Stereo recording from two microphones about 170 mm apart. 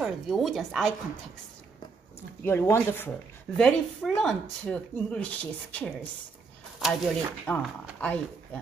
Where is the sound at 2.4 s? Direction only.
15° left (ahead or behind).